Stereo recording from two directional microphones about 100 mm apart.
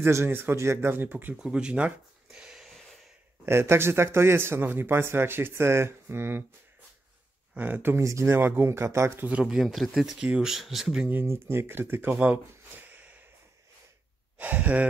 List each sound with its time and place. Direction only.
0.0 s speech: 25° right (ahead or behind)
1.4 s a sound: 10° right (ahead or behind)
3.4 s speech: 25° right (ahead or behind)
7.5 s speech: 15° right (ahead or behind)
9.3 s speech: 5° right (ahead or behind)
11.1 s speech: 20° right (ahead or behind)
14.4 s speech: 15° right (ahead or behind)